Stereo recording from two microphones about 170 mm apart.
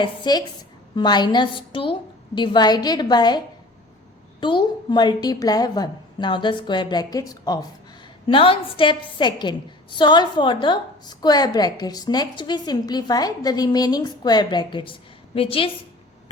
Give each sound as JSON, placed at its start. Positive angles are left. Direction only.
{"t": 0.0, "sound": "a woman's voice", "side_deg": 25}
{"t": 8.3, "sound": "a woman's voice", "side_deg": 30}